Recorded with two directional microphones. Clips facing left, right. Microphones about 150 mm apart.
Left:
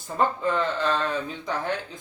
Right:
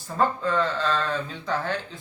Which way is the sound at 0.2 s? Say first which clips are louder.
Right 1 dB; 20° left (ahead or behind).